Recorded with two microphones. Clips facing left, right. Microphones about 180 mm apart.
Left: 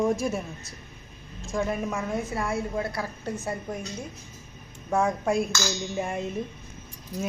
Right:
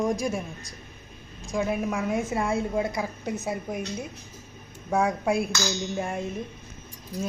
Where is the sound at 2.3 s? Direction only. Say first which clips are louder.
Right 3 dB; 20° right (ahead or behind).